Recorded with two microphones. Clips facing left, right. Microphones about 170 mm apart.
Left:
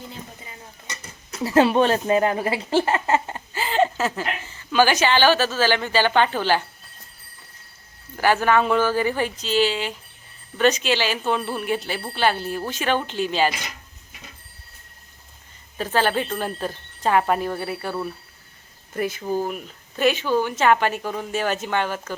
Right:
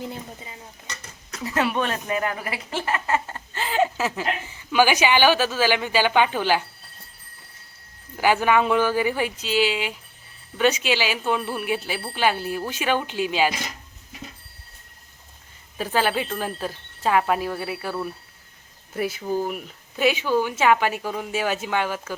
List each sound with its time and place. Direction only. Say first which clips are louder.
1.5 s speech: left 7 dB; 30° left (ahead or behind)
3.5 s a woman's voice: left 2 dB; centre (ahead or behind)
8.2 s a woman's voice: left 1 dB; 15° right (ahead or behind)
15.8 s a woman's voice: left 1 dB; 10° right (ahead or behind)